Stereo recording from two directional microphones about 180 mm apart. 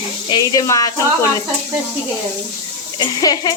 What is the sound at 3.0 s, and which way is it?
Speech, 20° left (ahead or behind).